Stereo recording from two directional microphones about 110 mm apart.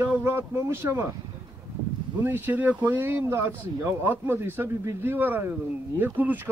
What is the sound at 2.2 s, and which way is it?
Speech, 20° right (ahead or behind).